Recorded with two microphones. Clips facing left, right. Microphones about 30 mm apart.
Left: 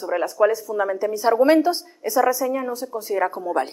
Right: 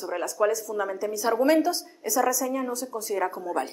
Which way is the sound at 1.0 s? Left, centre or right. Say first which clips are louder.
Left 6 dB; left.